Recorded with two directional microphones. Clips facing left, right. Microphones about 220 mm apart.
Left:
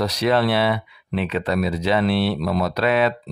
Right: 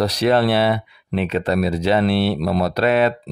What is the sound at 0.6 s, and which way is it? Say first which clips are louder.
Speech: right 2 dB; 50° right (ahead or behind).